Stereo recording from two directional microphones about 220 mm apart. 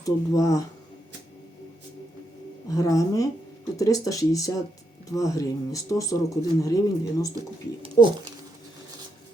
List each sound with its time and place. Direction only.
0.0 s speech: 15° left (ahead or behind)
2.6 s speech: 15° left (ahead or behind)
7.8 s speech: 20° right (ahead or behind)